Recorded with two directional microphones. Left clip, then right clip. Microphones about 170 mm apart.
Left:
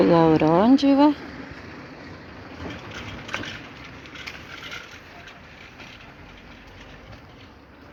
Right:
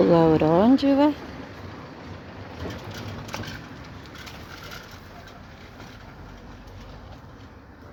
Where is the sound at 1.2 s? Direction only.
40° left (ahead or behind).